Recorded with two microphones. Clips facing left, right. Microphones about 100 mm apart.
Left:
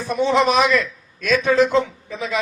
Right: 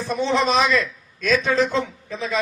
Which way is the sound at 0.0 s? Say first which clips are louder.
Left 3 dB; 15° left (ahead or behind).